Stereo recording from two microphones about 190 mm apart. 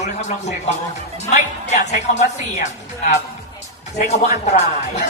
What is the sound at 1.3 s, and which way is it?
A woman's voice, 35° left (ahead or behind).